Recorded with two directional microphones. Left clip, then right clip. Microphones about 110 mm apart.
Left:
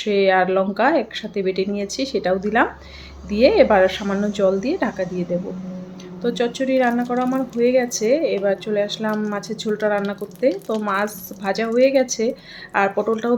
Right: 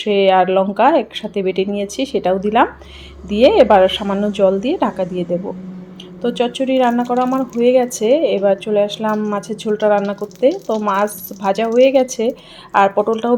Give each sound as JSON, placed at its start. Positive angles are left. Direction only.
{"t": 0.0, "sound": "a woman's voice", "side_deg": -25}
{"t": 6.2, "sound": "a woman's voice", "side_deg": -30}